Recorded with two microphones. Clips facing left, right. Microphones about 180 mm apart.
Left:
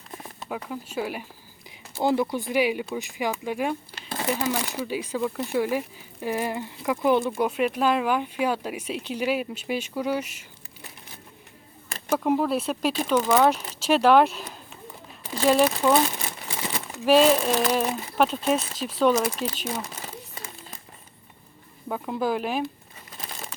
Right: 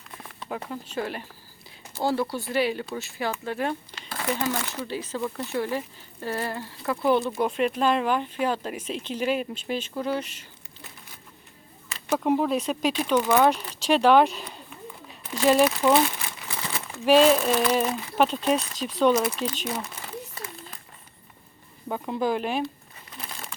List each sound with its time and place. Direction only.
0.4 s speech: 5° left (ahead or behind)
11.9 s a sound: 50° left (ahead or behind)
12.1 s speech: centre (ahead or behind)
15.4 s speech: centre (ahead or behind)
16.5 s crumpling: 20° left (ahead or behind)
17.1 s speech: 5° left (ahead or behind)
19.6 s crumpling: 25° left (ahead or behind)
21.8 s speech: centre (ahead or behind)